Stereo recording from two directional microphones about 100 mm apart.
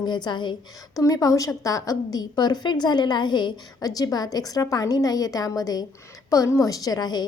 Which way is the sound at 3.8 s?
40° left (ahead or behind).